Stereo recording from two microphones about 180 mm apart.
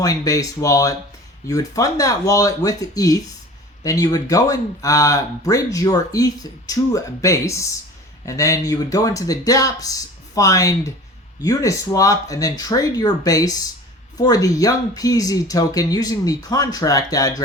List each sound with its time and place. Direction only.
0.0 s speech: 20° left (ahead or behind)